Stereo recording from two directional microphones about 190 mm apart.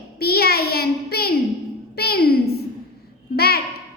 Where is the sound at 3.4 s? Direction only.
55° left (ahead or behind).